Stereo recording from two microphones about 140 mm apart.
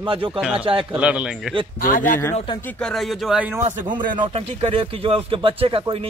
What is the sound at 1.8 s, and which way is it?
Speech, 75° left (ahead or behind).